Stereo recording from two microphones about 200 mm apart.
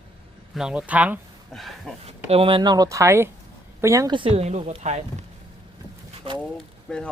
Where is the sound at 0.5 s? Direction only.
5° right (ahead or behind).